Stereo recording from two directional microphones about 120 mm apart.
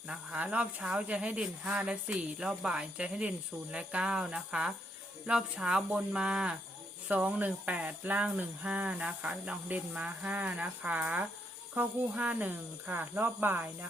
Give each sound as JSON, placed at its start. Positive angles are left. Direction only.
{"t": 0.1, "sound": "speech", "side_deg": -10}